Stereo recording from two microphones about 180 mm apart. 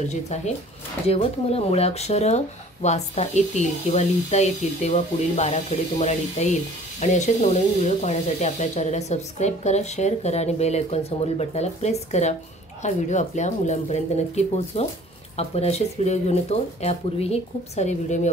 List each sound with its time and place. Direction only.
1.0 s speech: 35° left (ahead or behind)